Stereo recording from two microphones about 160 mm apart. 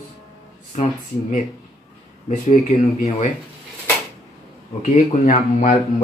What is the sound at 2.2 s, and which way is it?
Speech, 40° left (ahead or behind).